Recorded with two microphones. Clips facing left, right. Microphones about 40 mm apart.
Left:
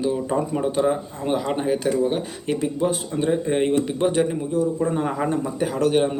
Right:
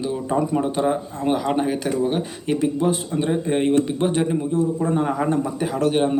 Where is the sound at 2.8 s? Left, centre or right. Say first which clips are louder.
Right 1 dB; centre.